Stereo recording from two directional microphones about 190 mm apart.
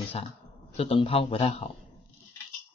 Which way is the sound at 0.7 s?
30° left (ahead or behind).